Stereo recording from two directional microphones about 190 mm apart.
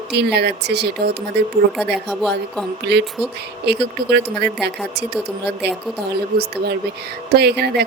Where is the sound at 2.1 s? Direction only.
Centre (ahead or behind).